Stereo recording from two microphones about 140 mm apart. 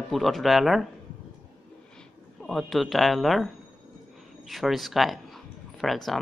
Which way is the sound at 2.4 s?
Centre (ahead or behind).